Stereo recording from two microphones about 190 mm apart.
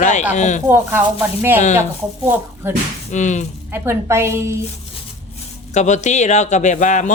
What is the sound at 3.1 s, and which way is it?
Speech, 40° left (ahead or behind).